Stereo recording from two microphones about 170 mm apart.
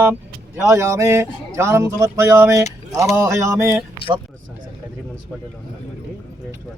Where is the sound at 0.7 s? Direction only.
15° right (ahead or behind).